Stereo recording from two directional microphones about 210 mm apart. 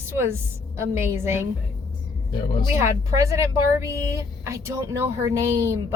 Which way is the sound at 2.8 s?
15° right (ahead or behind).